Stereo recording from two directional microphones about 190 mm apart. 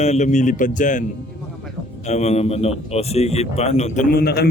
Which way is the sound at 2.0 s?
35° left (ahead or behind).